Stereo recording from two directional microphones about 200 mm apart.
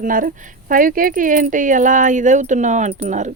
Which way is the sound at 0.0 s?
40° right (ahead or behind).